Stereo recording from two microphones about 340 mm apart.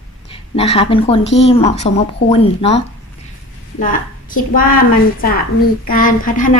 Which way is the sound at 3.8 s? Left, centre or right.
Left.